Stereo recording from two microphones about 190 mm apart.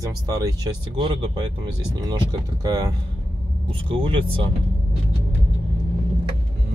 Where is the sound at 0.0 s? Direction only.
20° right (ahead or behind).